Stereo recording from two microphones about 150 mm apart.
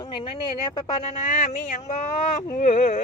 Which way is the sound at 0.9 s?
50° left (ahead or behind).